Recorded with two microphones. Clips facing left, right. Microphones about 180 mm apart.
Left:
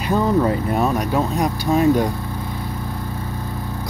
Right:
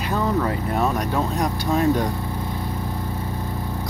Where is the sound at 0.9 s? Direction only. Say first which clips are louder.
Left 3 dB; 5° left (ahead or behind).